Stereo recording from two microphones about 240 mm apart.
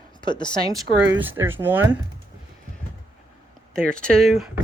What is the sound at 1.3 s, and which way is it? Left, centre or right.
Speech, centre.